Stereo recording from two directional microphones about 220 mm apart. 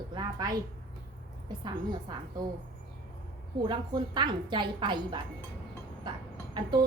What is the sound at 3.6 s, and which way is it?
A woman's voice, 20° right (ahead or behind).